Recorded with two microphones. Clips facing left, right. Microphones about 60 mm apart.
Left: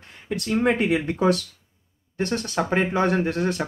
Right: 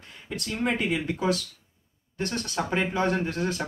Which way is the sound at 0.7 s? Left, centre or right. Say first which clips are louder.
Left 5 dB; left.